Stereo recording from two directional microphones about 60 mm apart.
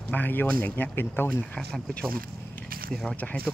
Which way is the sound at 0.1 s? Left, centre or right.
Left.